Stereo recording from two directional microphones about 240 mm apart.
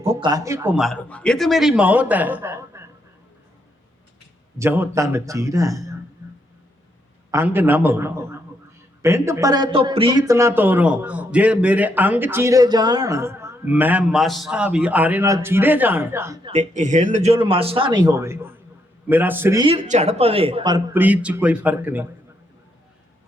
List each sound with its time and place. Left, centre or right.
0.0 s speech: centre
4.5 s speech: centre
7.3 s speech: centre
16.5 s a man's voice: right; by 22.0 s centre